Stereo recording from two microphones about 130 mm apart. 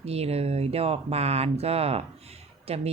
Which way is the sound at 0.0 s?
50° right (ahead or behind).